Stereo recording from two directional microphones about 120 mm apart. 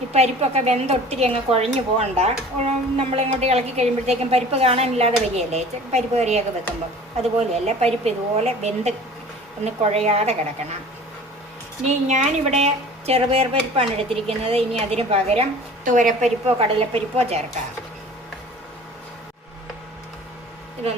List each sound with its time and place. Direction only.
0.1 s speech: 65° right (ahead or behind)
11.9 s speech: 70° right (ahead or behind)
15.9 s speech: 90° right; by 17.4 s 60° right (ahead or behind)